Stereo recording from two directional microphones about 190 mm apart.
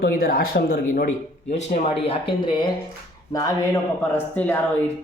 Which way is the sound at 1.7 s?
30° left (ahead or behind).